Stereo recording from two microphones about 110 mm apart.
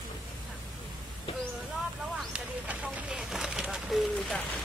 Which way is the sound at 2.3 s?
10° right (ahead or behind).